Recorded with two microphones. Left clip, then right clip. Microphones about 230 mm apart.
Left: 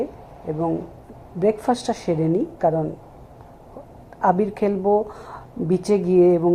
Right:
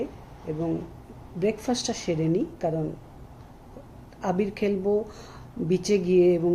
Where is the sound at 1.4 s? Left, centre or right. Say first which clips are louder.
Left 7 dB; centre.